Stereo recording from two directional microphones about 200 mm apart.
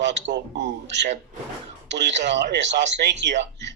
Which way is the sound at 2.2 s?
60° right (ahead or behind).